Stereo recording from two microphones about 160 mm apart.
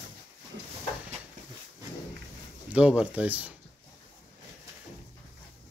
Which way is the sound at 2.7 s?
5° right (ahead or behind).